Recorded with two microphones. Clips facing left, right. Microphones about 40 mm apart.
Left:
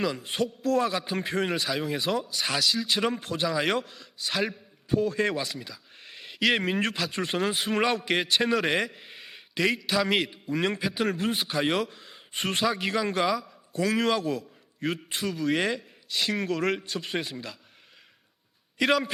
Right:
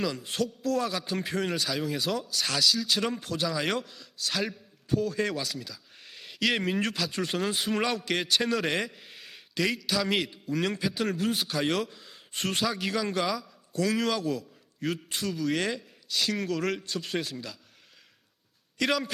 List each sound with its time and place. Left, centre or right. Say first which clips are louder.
0.3 s speech: left 2 dB; centre
4.2 s a man's voice: left 2 dB; centre
11.8 s a man's voice: left 2 dB; centre
18.9 s speech: left 4 dB; centre